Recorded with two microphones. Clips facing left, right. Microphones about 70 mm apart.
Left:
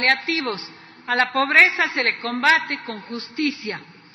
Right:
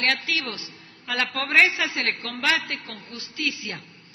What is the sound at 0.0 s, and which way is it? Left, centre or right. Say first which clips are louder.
A man's voice: left 5 dB; left.